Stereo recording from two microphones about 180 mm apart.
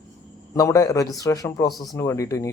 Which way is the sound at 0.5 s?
20° left (ahead or behind).